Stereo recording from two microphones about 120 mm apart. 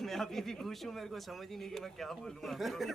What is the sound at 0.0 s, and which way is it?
A man's voice, 5° left (ahead or behind).